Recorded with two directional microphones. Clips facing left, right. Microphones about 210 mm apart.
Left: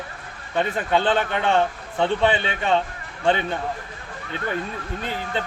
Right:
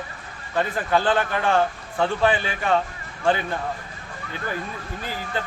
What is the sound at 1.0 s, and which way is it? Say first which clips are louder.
Speech: even; 25° left (ahead or behind).